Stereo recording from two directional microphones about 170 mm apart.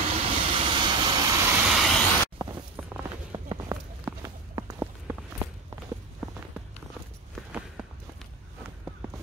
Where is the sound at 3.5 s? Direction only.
20° right (ahead or behind).